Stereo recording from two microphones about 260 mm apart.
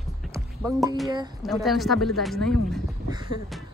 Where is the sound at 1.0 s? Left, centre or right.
Centre.